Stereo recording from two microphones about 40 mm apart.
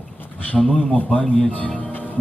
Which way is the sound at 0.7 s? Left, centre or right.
Left.